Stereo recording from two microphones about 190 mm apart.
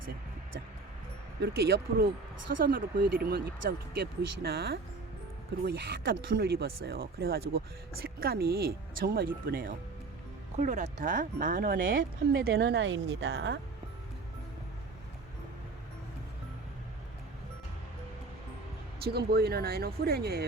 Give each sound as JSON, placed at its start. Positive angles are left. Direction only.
{"t": 1.4, "sound": "speech", "side_deg": -60}
{"t": 10.6, "sound": "speech", "side_deg": -40}
{"t": 18.9, "sound": "speech", "side_deg": -55}